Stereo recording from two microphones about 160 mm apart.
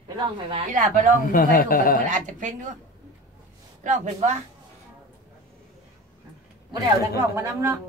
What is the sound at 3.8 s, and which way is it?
Speech, 50° right (ahead or behind).